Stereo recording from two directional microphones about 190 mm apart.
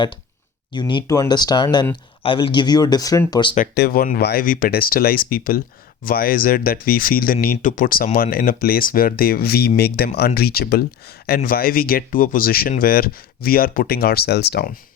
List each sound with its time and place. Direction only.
0.7 s speech: 25° left (ahead or behind)
3.8 s speech: 50° left (ahead or behind)